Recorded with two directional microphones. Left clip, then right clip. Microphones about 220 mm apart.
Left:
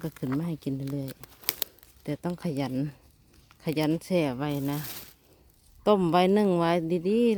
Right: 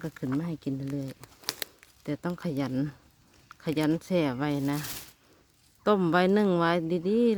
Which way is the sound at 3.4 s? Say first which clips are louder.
Even; centre (ahead or behind).